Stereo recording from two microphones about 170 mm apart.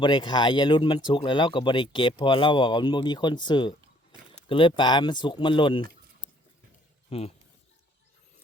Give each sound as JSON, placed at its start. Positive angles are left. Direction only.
{"t": 0.0, "sound": "speech", "side_deg": 25}
{"t": 7.1, "sound": "speech", "side_deg": 35}